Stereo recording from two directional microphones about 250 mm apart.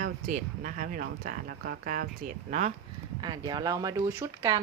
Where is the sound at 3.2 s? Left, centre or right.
Centre.